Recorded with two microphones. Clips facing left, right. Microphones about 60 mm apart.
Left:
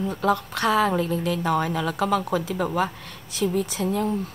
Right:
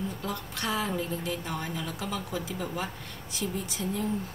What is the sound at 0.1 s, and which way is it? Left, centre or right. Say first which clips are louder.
A woman's voice: left 12 dB; left.